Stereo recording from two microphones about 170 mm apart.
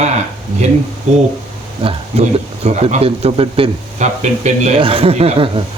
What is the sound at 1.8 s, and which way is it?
Speech, 35° right (ahead or behind).